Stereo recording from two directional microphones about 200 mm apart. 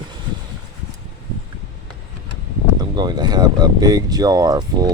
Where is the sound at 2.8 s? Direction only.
20° right (ahead or behind).